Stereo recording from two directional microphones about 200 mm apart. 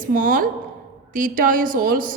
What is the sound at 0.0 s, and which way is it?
A woman's voice, 45° right (ahead or behind).